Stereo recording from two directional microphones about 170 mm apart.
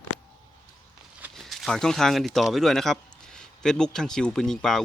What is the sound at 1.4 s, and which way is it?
Speech, centre (ahead or behind).